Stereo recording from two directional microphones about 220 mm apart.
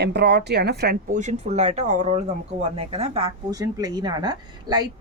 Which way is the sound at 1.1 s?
30° right (ahead or behind).